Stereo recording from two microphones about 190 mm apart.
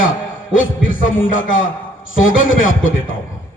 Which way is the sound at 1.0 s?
90° left.